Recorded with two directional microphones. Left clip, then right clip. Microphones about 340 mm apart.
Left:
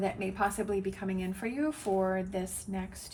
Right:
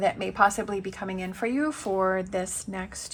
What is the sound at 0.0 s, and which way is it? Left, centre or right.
A woman's voice, centre.